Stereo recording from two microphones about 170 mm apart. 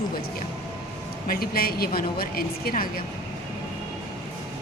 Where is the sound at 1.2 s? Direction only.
60° left (ahead or behind).